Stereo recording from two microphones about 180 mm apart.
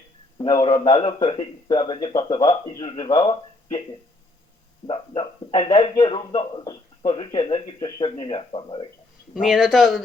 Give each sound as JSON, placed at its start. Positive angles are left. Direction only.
{"t": 0.3, "sound": "speech", "side_deg": 25}
{"t": 4.9, "sound": "speech", "side_deg": 30}
{"t": 9.3, "sound": "speech", "side_deg": 0}